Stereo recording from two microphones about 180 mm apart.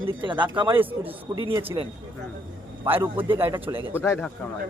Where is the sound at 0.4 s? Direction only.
25° right (ahead or behind).